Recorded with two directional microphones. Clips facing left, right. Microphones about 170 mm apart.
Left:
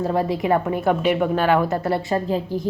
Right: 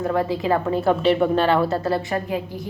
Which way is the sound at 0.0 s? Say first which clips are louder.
Left 1 dB; 25° left (ahead or behind).